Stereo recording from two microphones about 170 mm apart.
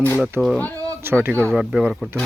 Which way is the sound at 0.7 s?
15° right (ahead or behind).